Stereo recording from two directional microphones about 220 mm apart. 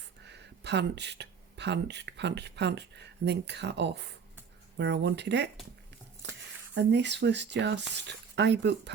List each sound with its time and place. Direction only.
0.3 s speech: 50° right (ahead or behind)
6.2 s a sound: 50° right (ahead or behind)
6.7 s speech: 50° right (ahead or behind)